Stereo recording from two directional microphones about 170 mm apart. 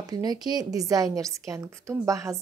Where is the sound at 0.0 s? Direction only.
20° right (ahead or behind).